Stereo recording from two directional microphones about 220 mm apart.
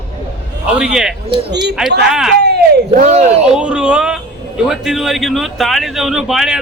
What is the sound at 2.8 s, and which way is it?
Speech, 30° right (ahead or behind).